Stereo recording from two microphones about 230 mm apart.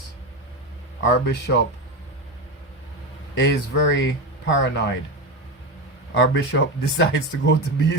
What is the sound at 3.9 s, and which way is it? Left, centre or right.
Speech, left.